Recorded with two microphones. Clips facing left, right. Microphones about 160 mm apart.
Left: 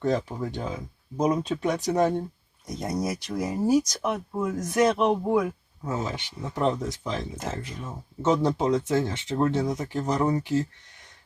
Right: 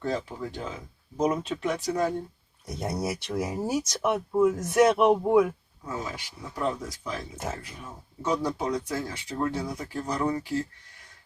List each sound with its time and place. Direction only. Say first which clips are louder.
0.0 s speech: left 4 dB; 20° left (ahead or behind)
2.8 s speech: left 1 dB; 5° right (ahead or behind)
5.8 s speech: left 4 dB; 25° left (ahead or behind)